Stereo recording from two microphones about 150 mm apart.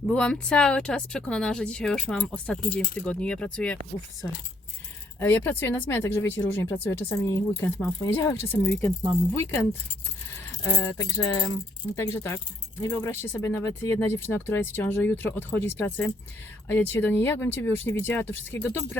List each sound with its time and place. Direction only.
0.1 s speech: 5° left (ahead or behind)
5.2 s speech: 15° left (ahead or behind)